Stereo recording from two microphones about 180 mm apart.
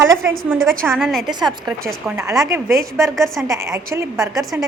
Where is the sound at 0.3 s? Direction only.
Centre (ahead or behind).